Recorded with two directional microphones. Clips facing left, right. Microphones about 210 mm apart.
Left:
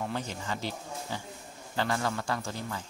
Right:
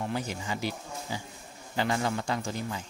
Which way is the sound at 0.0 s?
10° right (ahead or behind).